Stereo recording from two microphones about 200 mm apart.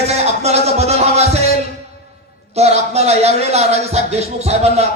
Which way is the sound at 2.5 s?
30° right (ahead or behind).